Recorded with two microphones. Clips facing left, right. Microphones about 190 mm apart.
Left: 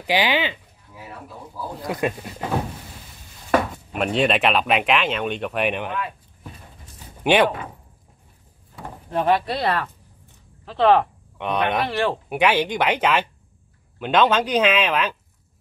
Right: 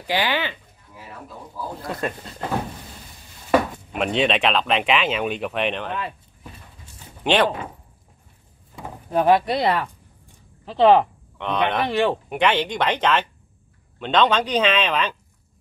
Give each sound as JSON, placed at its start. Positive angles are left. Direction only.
{"t": 0.0, "sound": "speech", "side_deg": 15}
{"t": 1.8, "sound": "speech", "side_deg": 15}
{"t": 3.9, "sound": "speech", "side_deg": 0}
{"t": 7.2, "sound": "speech", "side_deg": 10}
{"t": 8.8, "sound": "speech", "side_deg": -10}
{"t": 11.3, "sound": "speech", "side_deg": 10}
{"t": 11.9, "sound": "speech", "side_deg": -15}
{"t": 12.3, "sound": "speech", "side_deg": 10}